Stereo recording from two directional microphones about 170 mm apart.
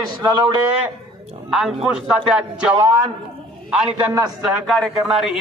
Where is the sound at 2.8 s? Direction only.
20° right (ahead or behind).